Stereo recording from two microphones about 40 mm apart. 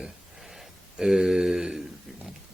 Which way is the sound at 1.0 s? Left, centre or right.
Centre.